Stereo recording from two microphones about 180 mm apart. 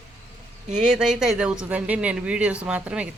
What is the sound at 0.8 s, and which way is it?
Speech, 5° right (ahead or behind).